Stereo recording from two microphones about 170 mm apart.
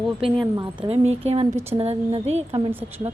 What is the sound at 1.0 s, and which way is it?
A woman's voice, 40° right (ahead or behind).